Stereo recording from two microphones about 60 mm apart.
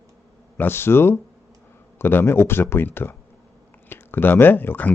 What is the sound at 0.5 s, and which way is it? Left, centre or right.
A man's voice, left.